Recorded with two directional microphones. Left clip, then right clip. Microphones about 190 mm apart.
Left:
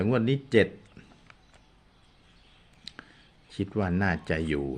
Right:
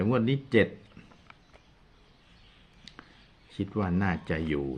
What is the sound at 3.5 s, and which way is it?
Speech, 25° left (ahead or behind).